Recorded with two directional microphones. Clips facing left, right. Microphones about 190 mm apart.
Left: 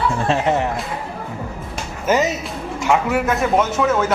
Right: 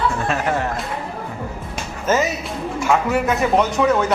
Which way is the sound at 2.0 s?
15° left (ahead or behind).